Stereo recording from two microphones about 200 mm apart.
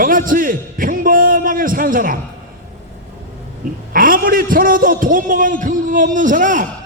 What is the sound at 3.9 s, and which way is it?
A man's voice, 45° right (ahead or behind).